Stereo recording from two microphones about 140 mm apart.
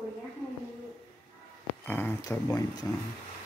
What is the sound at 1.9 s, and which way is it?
Speech, 15° left (ahead or behind).